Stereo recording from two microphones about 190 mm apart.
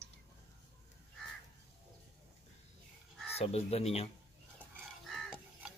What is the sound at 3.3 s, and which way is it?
Speech, 30° left (ahead or behind).